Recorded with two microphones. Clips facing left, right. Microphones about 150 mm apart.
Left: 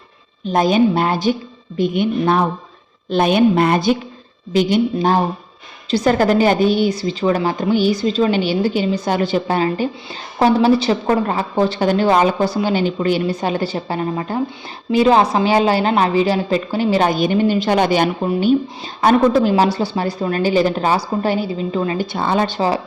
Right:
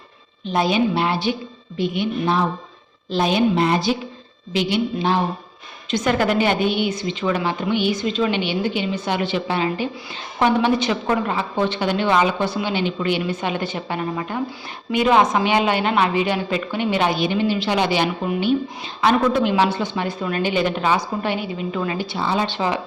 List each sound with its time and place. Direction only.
0.4 s a woman's voice: 45° left (ahead or behind)
21.9 s a woman's voice: 50° left (ahead or behind)